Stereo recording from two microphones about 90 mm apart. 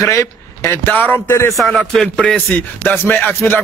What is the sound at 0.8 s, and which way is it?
Speech, 20° left (ahead or behind).